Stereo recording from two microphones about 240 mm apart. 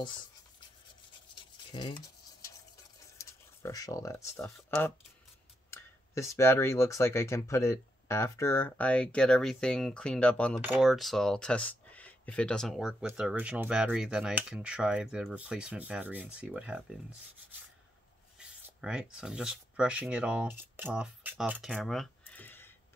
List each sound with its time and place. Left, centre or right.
1.7 s cutlery: centre
3.2 s speech: centre
18.4 s speech: centre